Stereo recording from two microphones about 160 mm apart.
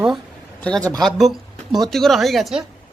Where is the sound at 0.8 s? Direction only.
20° right (ahead or behind).